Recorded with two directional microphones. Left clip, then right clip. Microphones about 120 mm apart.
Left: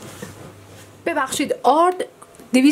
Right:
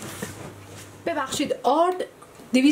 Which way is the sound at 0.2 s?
5° right (ahead or behind).